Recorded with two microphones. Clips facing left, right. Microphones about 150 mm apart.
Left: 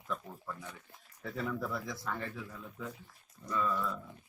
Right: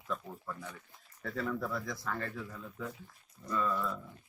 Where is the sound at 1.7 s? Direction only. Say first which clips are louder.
Right 1 dB; 5° left (ahead or behind).